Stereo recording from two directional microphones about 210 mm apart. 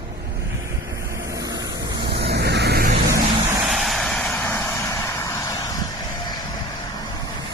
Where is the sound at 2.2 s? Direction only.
50° right (ahead or behind).